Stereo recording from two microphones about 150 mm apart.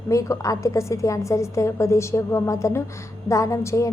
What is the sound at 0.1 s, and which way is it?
A woman's voice, 20° left (ahead or behind).